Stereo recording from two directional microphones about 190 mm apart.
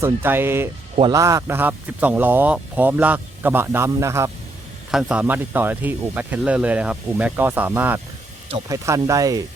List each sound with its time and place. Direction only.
0.0 s speech: 10° right (ahead or behind)
4.9 s speech: 5° right (ahead or behind); by 9.4 s 20° right (ahead or behind)